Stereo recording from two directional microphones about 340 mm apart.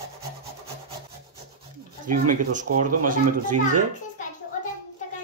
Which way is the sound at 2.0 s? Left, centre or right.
Right.